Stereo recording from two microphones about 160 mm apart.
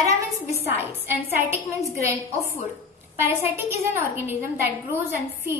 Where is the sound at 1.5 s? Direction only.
20° right (ahead or behind).